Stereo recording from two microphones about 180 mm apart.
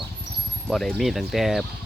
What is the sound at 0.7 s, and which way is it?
Speech, 5° left (ahead or behind).